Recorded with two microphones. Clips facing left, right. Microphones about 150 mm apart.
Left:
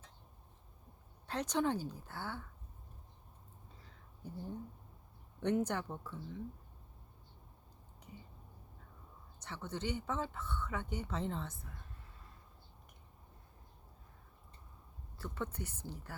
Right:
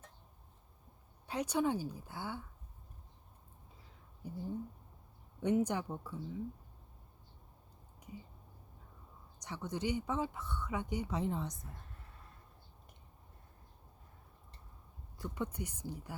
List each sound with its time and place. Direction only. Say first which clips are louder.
1.3 s speech: right 1 dB; 10° right (ahead or behind)
3.8 s a sound: right 2 dB; 10° right (ahead or behind)
5.4 s speech: right 2 dB; 10° right (ahead or behind)
9.4 s speech: right 3 dB; 15° right (ahead or behind)
15.2 s speech: right 2 dB; 15° right (ahead or behind)